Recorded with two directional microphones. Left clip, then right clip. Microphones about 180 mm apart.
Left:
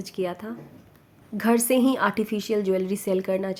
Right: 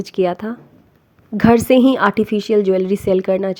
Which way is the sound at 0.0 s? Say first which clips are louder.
Right 11 dB; 45° right (ahead or behind).